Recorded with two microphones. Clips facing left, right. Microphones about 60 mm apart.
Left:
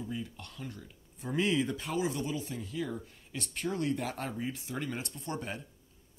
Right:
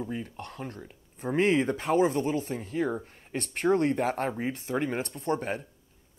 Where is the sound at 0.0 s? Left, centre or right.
Right.